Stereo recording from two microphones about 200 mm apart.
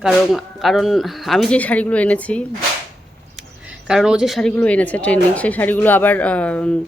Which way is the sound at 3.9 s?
5° right (ahead or behind).